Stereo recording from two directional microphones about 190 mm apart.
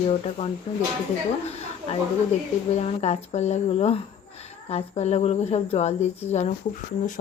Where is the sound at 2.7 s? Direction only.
35° left (ahead or behind).